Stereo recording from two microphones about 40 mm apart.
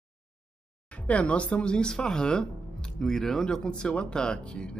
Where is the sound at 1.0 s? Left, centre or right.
Left.